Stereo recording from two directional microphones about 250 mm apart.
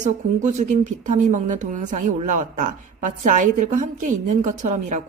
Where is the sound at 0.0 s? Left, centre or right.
Right.